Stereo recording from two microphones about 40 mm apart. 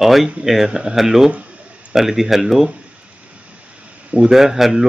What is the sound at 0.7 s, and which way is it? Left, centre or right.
Speech, right.